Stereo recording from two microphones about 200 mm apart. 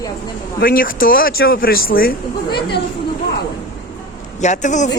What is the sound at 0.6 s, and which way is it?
Speech, 45° left (ahead or behind).